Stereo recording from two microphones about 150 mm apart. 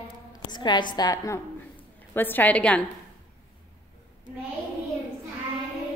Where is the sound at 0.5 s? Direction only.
30° left (ahead or behind).